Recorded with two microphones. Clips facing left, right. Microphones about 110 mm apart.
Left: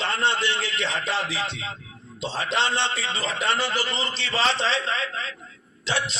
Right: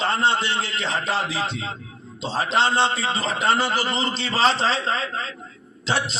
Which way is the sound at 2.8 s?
40° right (ahead or behind).